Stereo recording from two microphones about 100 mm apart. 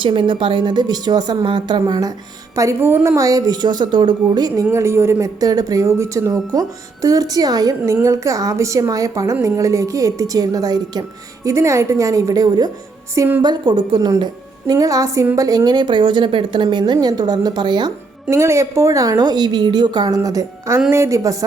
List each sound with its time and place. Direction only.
0.0 s a woman's voice: 55° right (ahead or behind)
2.6 s a woman's voice: 25° right (ahead or behind)
3.2 s a woman's voice: 35° right (ahead or behind)
4.7 s a woman's voice: 30° right (ahead or behind)
5.2 s a woman's voice: 40° right (ahead or behind)
11.4 s a woman's voice: 30° right (ahead or behind)
13.4 s a woman's voice: 50° right (ahead or behind)
14.0 s a woman's voice: 40° right (ahead or behind)
18.3 s a woman's voice: 30° right (ahead or behind)